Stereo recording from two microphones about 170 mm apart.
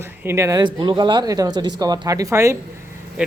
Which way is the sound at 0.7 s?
25° right (ahead or behind).